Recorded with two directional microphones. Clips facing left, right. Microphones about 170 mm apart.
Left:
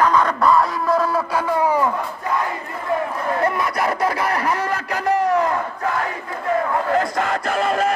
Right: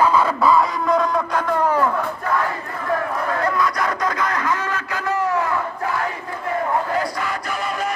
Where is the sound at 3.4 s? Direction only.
25° left (ahead or behind).